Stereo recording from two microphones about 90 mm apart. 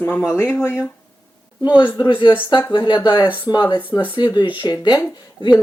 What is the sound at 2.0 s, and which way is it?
Speech, 65° left (ahead or behind).